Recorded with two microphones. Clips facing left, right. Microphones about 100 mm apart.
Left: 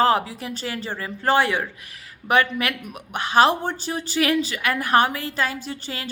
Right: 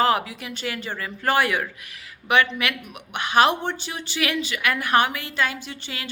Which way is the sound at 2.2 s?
40° left (ahead or behind).